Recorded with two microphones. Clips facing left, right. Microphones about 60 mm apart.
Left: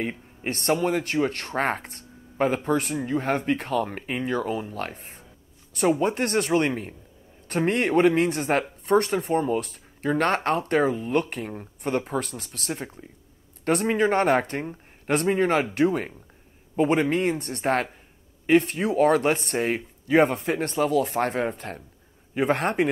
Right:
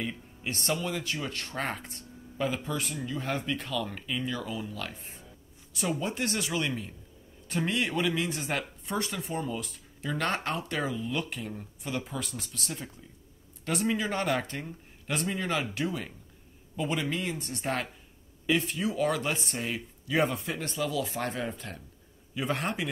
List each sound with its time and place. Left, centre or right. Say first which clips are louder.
0.0 s speech: left 6 dB; left